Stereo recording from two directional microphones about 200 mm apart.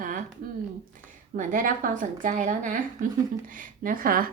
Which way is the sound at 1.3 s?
40° right (ahead or behind).